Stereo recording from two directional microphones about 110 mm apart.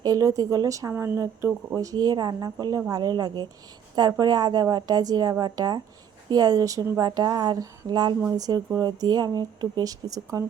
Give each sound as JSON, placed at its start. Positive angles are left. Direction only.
{"t": 0.0, "sound": "a woman's voice", "side_deg": -35}